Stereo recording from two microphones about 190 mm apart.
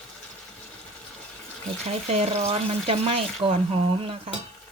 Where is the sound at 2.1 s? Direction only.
35° right (ahead or behind).